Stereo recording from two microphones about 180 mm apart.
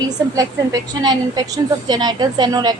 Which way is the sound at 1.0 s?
20° right (ahead or behind).